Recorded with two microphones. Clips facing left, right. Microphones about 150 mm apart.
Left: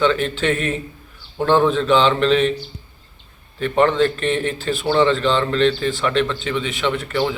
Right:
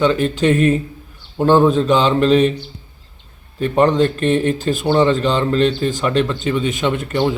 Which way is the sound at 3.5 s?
40° right (ahead or behind).